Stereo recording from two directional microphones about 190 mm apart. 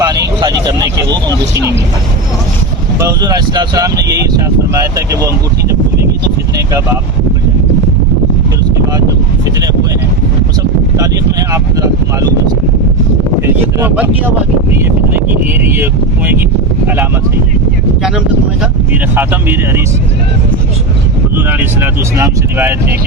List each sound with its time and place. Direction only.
0.0 s vehicle: 20° right (ahead or behind)
3.0 s speech: 20° right (ahead or behind)
10.9 s speech: 20° right (ahead or behind)
13.7 s speech: 10° right (ahead or behind)
19.1 s speech: 10° right (ahead or behind)
21.3 s speech: 10° right (ahead or behind)